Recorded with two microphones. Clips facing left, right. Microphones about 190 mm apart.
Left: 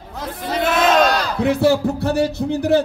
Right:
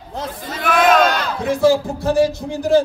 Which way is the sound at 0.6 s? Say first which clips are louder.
Right 1 dB; 25° left (ahead or behind).